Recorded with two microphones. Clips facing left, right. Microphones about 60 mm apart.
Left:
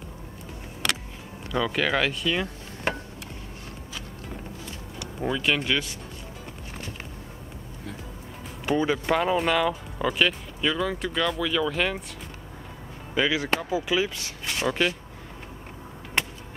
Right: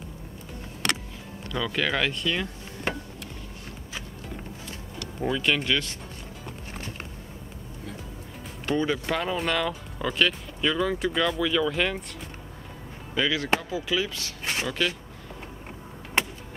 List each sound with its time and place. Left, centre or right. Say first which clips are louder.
1.5 s speech: left 2 dB; centre
5.2 s speech: even; centre
8.6 s speech: left 2 dB; centre
13.1 s speech: left 1 dB; centre
14.4 s a sound: left 1 dB; right
14.7 s speech: left 4 dB; left